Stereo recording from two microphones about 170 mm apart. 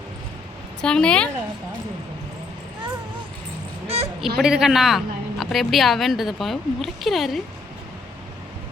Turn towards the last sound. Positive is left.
turn(degrees=0)  # may be behind; listen again after turning